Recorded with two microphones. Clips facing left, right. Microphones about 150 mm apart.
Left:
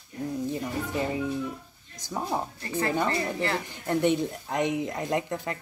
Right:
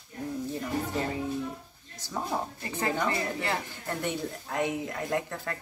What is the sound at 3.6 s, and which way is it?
Speech, 20° left (ahead or behind).